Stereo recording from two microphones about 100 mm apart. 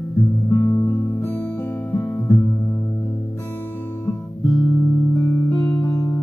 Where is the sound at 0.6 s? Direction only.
35° left (ahead or behind).